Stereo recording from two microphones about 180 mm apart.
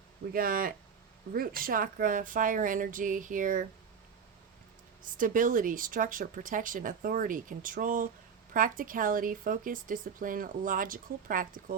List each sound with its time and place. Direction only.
0.3 s speech: 55° right (ahead or behind)
5.0 s speech: 50° right (ahead or behind)